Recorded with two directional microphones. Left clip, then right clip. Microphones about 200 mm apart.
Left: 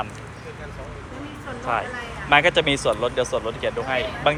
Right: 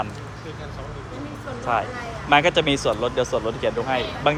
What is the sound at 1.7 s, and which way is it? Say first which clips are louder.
Speech: right 1 dB; 15° right (ahead or behind).